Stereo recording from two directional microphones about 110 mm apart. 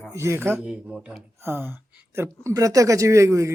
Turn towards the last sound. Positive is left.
turn(degrees=-25)  # may be behind; listen again after turning